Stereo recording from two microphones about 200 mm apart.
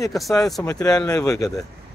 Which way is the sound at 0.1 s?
Centre (ahead or behind).